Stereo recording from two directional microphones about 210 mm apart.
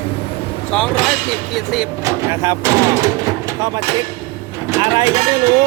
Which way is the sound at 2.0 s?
15° right (ahead or behind).